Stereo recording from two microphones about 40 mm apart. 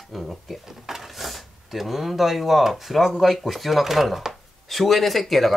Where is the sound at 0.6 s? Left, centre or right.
Centre.